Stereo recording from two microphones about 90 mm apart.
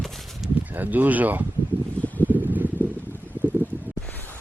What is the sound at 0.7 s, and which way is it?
Speech, 20° right (ahead or behind).